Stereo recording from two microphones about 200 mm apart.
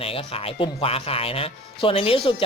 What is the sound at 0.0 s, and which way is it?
Speech, 30° left (ahead or behind).